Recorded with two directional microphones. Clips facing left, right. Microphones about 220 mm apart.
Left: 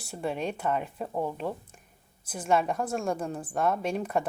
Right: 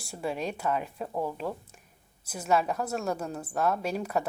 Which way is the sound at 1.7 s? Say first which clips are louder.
Left 1 dB; 10° right (ahead or behind).